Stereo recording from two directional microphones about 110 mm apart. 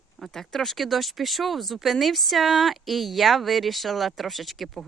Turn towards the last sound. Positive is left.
turn(degrees=0)  # may be behind; listen again after turning